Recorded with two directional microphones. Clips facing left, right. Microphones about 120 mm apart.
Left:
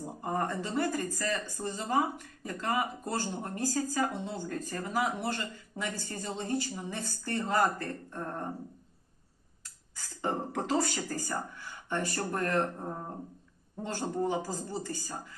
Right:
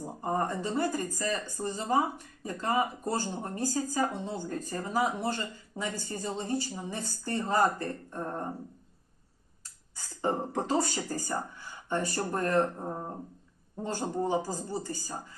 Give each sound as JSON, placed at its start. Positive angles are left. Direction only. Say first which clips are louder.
{"t": 0.0, "sound": "speech", "louder": "right 2 dB", "side_deg": -25}
{"t": 10.2, "sound": "speech", "louder": "right 2 dB", "side_deg": -20}
{"t": 14.2, "sound": "speech", "louder": "right 2 dB", "side_deg": -20}